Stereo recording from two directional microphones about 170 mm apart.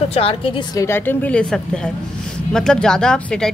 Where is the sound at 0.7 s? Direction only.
15° left (ahead or behind).